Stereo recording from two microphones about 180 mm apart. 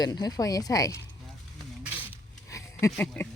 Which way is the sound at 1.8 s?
10° right (ahead or behind).